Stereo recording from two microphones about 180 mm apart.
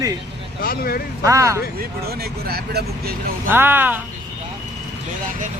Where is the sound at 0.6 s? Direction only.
55° left (ahead or behind).